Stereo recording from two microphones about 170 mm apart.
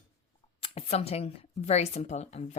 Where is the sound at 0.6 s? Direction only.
35° left (ahead or behind).